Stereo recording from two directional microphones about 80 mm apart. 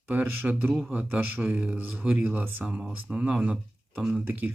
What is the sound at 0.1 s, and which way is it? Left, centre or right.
A man's voice, centre.